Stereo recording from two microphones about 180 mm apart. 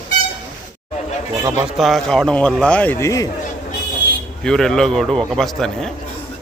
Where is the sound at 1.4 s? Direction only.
5° right (ahead or behind); by 3.2 s 15° left (ahead or behind).